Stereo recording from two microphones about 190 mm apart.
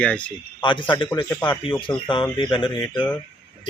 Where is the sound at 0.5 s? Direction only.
25° left (ahead or behind).